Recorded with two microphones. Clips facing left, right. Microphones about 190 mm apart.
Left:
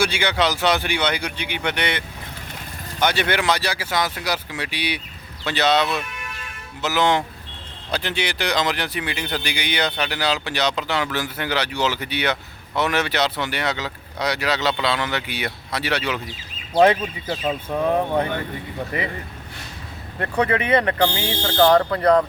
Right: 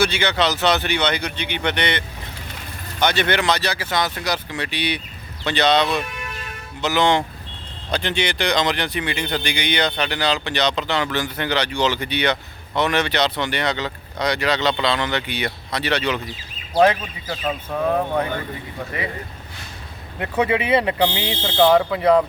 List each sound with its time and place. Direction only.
0.0 s speech: 10° left (ahead or behind)
16.7 s speech: 25° left (ahead or behind)
20.1 s speech: 5° right (ahead or behind)
21.6 s speech: 5° right (ahead or behind)